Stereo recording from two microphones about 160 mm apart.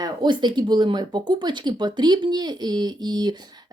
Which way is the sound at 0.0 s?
30° right (ahead or behind).